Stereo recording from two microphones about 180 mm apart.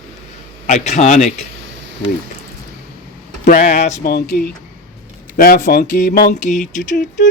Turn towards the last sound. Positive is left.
turn(degrees=45)  # may be behind; listen again after turning